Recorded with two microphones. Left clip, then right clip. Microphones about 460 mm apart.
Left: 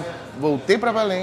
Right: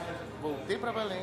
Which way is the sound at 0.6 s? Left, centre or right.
Left.